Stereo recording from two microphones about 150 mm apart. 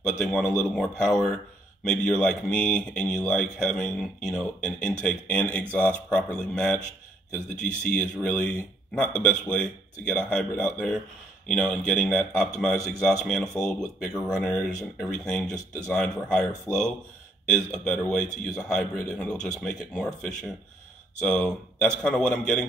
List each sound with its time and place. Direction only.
0.2 s a man's voice: 5° left (ahead or behind)
8.2 s a man's voice: 10° left (ahead or behind)
16.7 s speech: 20° left (ahead or behind)
17.5 s speech: 5° left (ahead or behind)